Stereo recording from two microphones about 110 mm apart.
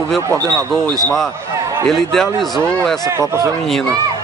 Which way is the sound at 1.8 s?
5° left (ahead or behind).